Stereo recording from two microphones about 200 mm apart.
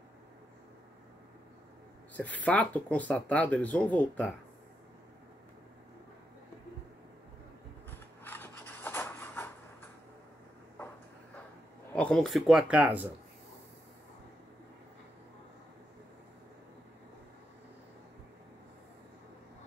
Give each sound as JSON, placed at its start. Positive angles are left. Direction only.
{"t": 2.4, "sound": "speech", "side_deg": 5}
{"t": 8.2, "sound": "rub", "side_deg": 10}
{"t": 11.9, "sound": "speech", "side_deg": 5}